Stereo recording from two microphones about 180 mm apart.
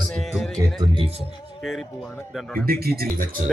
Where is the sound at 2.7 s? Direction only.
55° right (ahead or behind).